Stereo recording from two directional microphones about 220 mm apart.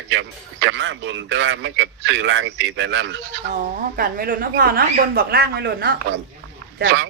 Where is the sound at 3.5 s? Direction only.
40° right (ahead or behind).